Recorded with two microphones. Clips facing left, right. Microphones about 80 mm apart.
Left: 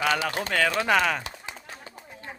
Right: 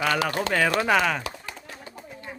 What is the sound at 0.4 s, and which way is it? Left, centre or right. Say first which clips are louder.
Speech: right 2 dB; centre.